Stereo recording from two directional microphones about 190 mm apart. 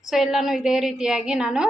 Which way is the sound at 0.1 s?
Centre (ahead or behind).